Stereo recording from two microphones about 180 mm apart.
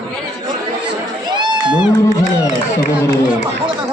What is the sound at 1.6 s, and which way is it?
Speech, 5° right (ahead or behind).